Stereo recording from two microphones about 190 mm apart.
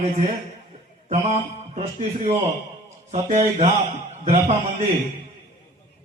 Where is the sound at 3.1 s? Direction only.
35° right (ahead or behind).